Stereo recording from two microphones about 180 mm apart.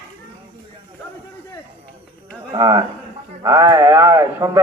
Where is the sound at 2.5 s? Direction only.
25° right (ahead or behind).